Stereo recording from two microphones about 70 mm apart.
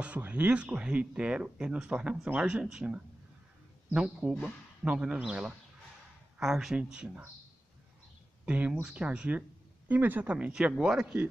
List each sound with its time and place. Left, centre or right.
0.0 s speech: right
4.2 s speech: centre
8.5 s a woman's voice: right
9.8 s a woman's voice: right
10.3 s speech: centre